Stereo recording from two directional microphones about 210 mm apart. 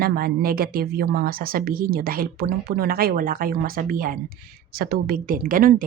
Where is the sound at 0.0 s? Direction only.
45° right (ahead or behind).